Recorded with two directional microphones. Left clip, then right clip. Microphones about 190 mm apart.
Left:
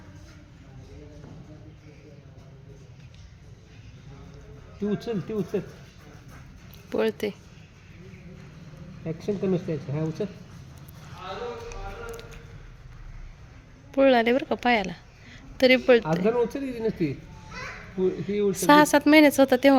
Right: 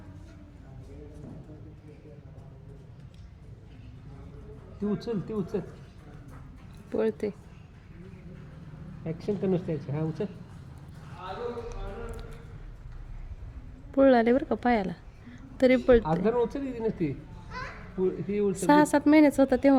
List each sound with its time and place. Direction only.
4.9 s speech: 45° left (ahead or behind)
6.9 s speech: 5° right (ahead or behind)
9.2 s speech: 50° left (ahead or behind)
13.9 s a woman's voice: 20° right (ahead or behind)
16.2 s speech: 50° left (ahead or behind)
18.3 s speech: 50° left (ahead or behind)
18.5 s a woman's voice: 10° right (ahead or behind)